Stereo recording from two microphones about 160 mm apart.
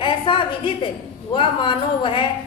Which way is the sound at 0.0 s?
30° left (ahead or behind).